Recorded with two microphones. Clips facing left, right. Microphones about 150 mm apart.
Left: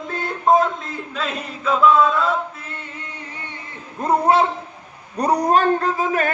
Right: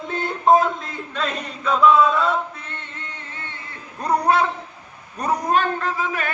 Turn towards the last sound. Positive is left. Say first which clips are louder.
# left 5 dB
turn(degrees=40)  # may be behind; listen again after turning